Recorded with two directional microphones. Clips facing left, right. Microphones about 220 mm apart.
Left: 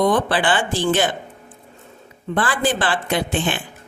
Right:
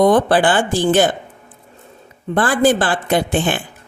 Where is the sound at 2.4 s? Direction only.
45° right (ahead or behind).